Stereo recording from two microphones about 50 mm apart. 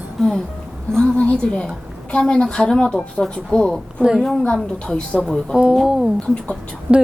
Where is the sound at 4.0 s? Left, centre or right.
Centre.